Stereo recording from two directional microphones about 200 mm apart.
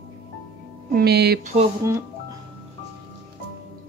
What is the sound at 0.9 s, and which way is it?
Speech, 55° right (ahead or behind).